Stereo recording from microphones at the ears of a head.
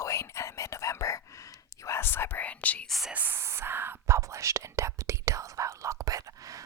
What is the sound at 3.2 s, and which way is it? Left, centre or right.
Whispering, right.